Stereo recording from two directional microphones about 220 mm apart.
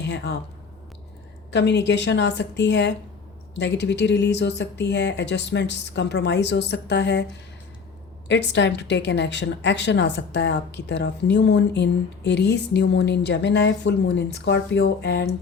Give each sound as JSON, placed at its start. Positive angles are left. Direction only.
{"t": 0.0, "sound": "speech", "side_deg": 50}
{"t": 1.5, "sound": "a woman's voice", "side_deg": 50}
{"t": 8.3, "sound": "a woman's voice", "side_deg": 55}